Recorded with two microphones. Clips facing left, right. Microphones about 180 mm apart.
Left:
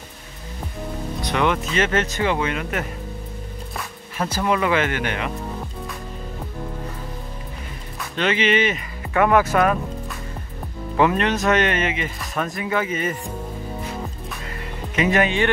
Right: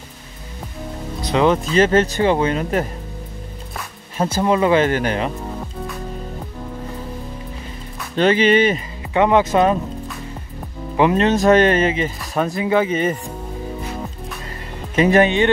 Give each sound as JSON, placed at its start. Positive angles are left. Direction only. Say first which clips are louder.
{"t": 1.3, "sound": "speech", "louder": "right 6 dB", "side_deg": -30}
{"t": 4.2, "sound": "speech", "louder": "right 5 dB", "side_deg": -25}
{"t": 8.2, "sound": "speech", "louder": "right 6 dB", "side_deg": -35}
{"t": 9.1, "sound": "speech", "louder": "right 2 dB", "side_deg": -20}
{"t": 11.0, "sound": "speech", "louder": "right 4 dB", "side_deg": -25}
{"t": 15.0, "sound": "speech", "louder": "right 5 dB", "side_deg": -35}